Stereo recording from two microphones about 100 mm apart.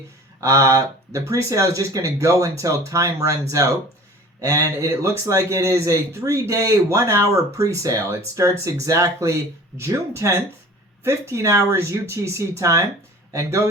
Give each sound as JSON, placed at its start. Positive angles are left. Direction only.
{"t": 0.3, "sound": "speech", "side_deg": -30}
{"t": 4.4, "sound": "speech", "side_deg": -30}